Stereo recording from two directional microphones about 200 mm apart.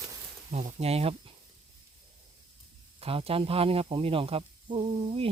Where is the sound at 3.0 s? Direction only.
30° right (ahead or behind).